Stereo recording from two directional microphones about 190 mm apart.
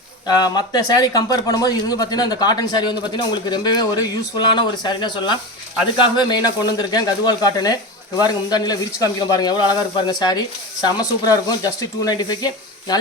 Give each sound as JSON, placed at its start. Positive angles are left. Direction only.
{"t": 0.3, "sound": "speech", "side_deg": 20}